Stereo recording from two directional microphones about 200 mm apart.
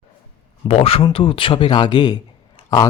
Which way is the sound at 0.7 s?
30° left (ahead or behind).